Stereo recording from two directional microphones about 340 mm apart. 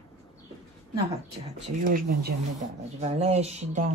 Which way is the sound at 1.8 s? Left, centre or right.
Right.